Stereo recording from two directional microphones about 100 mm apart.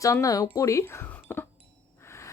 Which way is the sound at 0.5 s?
30° left (ahead or behind).